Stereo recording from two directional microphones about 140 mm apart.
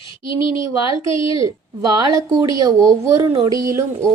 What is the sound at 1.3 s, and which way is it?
A woman's voice, 25° right (ahead or behind).